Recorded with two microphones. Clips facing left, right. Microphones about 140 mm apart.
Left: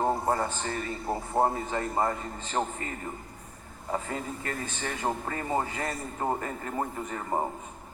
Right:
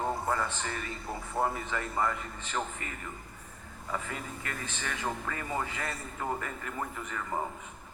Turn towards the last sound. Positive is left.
turn(degrees=35)  # may be behind; listen again after turning